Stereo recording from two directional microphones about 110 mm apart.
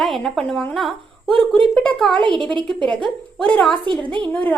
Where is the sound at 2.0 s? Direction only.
5° left (ahead or behind).